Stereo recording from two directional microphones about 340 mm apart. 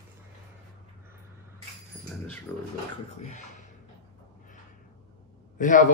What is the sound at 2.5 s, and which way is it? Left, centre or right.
Speech, centre.